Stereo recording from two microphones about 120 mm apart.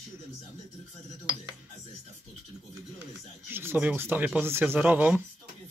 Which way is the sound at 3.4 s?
20° right (ahead or behind).